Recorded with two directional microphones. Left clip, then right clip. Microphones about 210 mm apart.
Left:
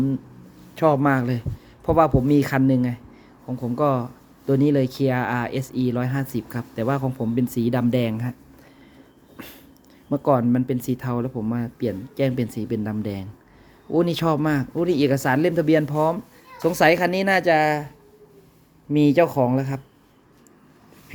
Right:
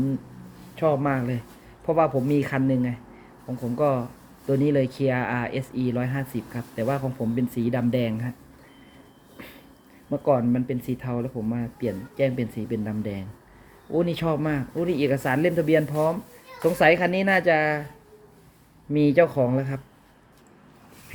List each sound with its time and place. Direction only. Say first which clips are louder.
0.8 s speech: left 4 dB; 25° left (ahead or behind)
10.1 s speech: left 2 dB; 25° left (ahead or behind)
18.9 s speech: left 2 dB; 15° left (ahead or behind)